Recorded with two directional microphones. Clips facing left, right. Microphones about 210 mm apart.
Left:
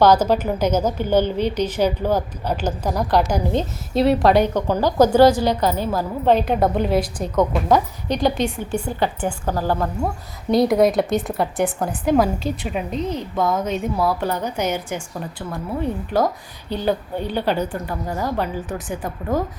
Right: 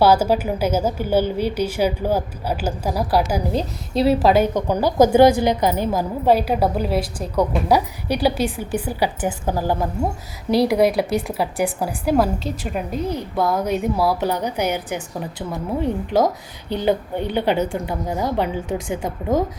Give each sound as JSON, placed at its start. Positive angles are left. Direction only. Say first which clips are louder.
{"t": 0.0, "sound": "a woman's voice", "louder": "left 1 dB", "side_deg": -10}
{"t": 10.5, "sound": "a woman's voice", "louder": "left 1 dB", "side_deg": -5}